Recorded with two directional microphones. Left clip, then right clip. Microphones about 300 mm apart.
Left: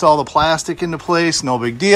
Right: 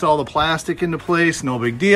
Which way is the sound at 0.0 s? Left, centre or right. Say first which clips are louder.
Left 4 dB; centre.